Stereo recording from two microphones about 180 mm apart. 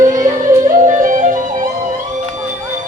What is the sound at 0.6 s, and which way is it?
Music, 45° right (ahead or behind).